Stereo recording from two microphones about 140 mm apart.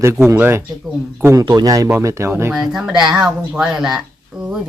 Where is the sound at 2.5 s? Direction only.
5° right (ahead or behind).